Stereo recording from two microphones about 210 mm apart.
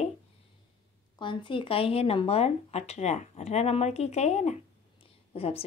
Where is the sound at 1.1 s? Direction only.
25° left (ahead or behind).